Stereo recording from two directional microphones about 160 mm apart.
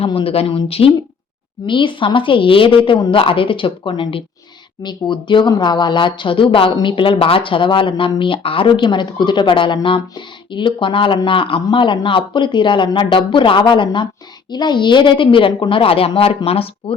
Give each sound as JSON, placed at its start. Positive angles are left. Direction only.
{"t": 0.0, "sound": "speech", "side_deg": 35}